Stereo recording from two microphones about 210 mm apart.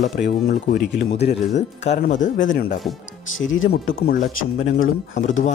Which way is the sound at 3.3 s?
70° left (ahead or behind).